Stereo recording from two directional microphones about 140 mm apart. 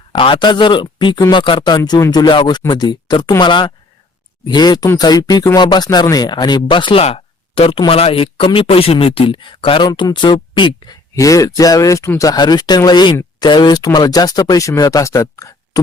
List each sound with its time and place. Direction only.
0.1 s speech: 40° left (ahead or behind)